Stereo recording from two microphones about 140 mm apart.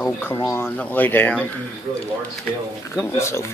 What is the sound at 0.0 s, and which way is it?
Speech, 15° left (ahead or behind).